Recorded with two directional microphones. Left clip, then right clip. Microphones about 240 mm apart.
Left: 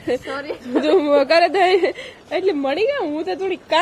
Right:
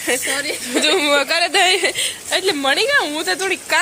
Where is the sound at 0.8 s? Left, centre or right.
Left.